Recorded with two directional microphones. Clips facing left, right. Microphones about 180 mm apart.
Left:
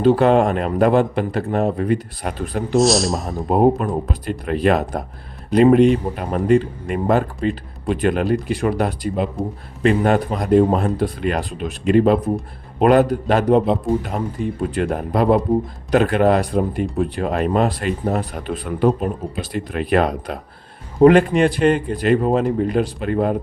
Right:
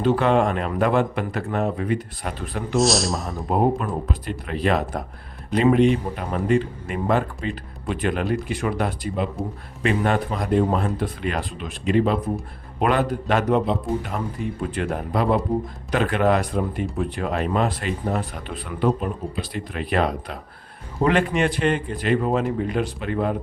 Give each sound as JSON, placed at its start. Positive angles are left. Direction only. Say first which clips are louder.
{"t": 0.0, "sound": "speech", "louder": "left 5 dB", "side_deg": 40}
{"t": 2.7, "sound": "a man's voice", "louder": "left 4 dB", "side_deg": 0}
{"t": 3.5, "sound": "speech", "louder": "left 5 dB", "side_deg": 40}
{"t": 14.7, "sound": "speech", "louder": "left 4 dB", "side_deg": 40}